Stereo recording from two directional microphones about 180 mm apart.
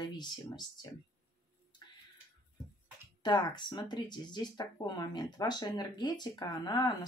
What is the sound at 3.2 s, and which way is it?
Speech, 25° left (ahead or behind).